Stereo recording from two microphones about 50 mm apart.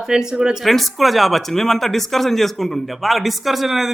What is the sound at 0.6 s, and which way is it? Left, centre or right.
Speech, centre.